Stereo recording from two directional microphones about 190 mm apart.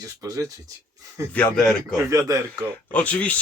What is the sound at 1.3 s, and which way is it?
Speech, 5° left (ahead or behind).